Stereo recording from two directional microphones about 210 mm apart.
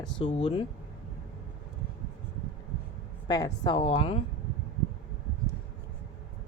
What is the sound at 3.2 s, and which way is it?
A woman's voice, 20° left (ahead or behind).